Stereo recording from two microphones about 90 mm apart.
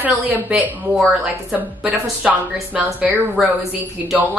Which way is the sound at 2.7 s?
15° right (ahead or behind).